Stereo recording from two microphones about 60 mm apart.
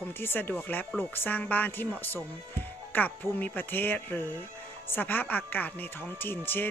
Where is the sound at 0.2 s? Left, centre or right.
Left.